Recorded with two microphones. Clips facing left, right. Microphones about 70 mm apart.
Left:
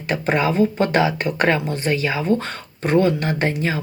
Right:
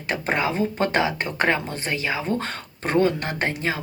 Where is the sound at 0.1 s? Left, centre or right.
Right.